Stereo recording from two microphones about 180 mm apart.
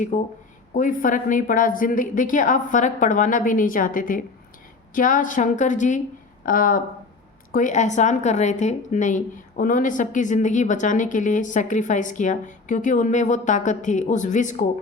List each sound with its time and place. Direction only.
0.1 s a woman's voice: 45° left (ahead or behind)